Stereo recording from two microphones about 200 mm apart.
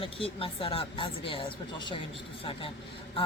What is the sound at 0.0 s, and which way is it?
A woman's voice, 25° left (ahead or behind).